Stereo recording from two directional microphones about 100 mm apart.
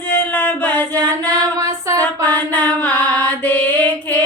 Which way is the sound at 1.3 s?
35° right (ahead or behind).